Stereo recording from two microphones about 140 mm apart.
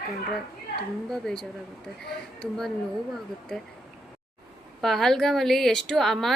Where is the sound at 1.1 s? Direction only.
5° left (ahead or behind).